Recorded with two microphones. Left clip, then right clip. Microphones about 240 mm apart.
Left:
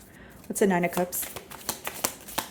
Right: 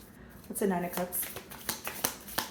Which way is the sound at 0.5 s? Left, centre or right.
Left.